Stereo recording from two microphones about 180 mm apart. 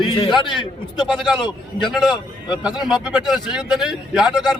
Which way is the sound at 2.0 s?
5° right (ahead or behind).